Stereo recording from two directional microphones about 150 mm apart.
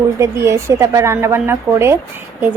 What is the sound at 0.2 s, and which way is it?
A woman's voice, 20° right (ahead or behind).